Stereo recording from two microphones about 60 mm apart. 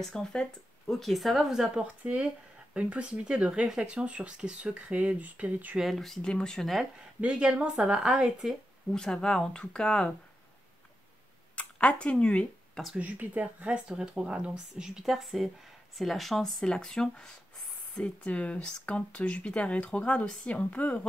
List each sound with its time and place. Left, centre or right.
0.0 s speech: centre
1.8 s speech: centre
5.8 s speech: centre
7.2 s speech: centre
8.9 s speech: centre
11.5 s speech: left
12.9 s speech: right
13.7 s speech: centre
17.9 s speech: left